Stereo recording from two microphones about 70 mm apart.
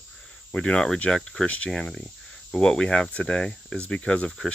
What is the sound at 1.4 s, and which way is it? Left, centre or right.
Speech, centre.